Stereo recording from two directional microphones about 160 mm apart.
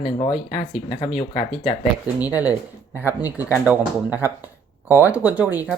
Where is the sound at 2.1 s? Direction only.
10° right (ahead or behind).